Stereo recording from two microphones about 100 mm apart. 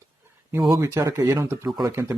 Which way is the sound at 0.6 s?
30° right (ahead or behind).